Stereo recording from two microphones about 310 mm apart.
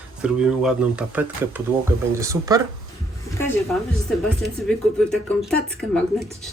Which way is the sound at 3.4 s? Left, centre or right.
Centre.